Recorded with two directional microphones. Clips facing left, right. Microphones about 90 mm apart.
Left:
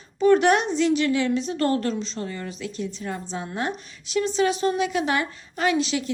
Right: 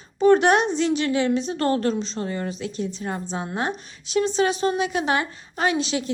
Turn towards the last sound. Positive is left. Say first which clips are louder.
# even
turn(degrees=-25)  # may be behind; listen again after turning